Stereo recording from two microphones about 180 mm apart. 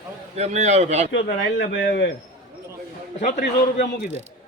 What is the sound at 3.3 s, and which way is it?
Speech, 55° left (ahead or behind).